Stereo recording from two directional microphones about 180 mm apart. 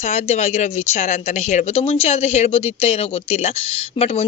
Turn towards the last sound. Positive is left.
turn(degrees=35)  # may be behind; listen again after turning